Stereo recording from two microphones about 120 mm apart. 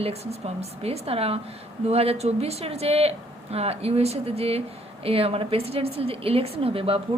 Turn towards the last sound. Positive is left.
turn(degrees=-50)  # may be behind; listen again after turning